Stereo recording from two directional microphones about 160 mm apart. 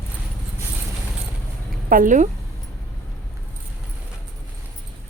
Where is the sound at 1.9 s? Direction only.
55° right (ahead or behind).